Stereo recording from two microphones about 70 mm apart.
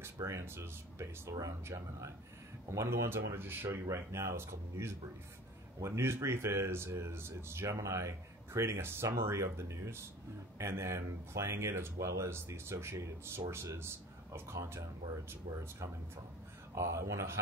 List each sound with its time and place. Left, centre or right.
0.2 s speech: right
3.9 s speech: right